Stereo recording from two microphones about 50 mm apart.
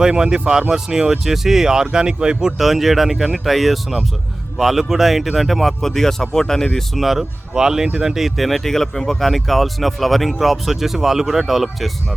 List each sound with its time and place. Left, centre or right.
0.0 s speech: centre
2.6 s speech: centre
7.0 s speech: centre